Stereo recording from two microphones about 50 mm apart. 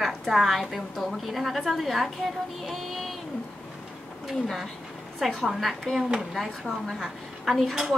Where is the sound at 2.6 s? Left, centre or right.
Centre.